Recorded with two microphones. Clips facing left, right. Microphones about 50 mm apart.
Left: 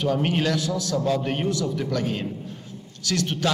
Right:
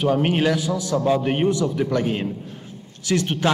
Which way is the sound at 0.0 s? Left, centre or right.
Centre.